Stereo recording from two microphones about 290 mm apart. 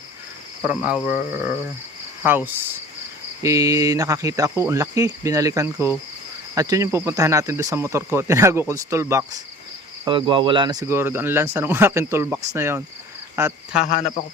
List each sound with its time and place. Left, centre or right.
0.6 s speech: centre
13.9 s speech: left